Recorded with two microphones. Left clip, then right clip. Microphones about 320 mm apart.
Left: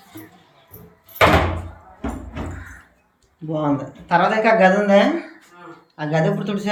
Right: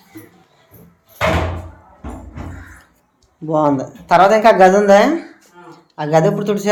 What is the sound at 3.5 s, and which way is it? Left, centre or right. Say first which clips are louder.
Speech: right 7 dB; centre.